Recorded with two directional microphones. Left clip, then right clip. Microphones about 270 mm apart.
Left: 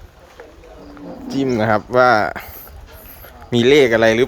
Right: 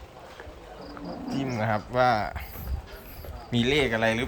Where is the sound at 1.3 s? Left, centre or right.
Left.